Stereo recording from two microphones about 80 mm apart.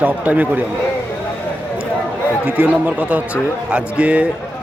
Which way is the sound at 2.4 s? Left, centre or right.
Centre.